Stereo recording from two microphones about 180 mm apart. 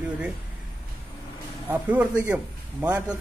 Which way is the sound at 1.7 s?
10° right (ahead or behind).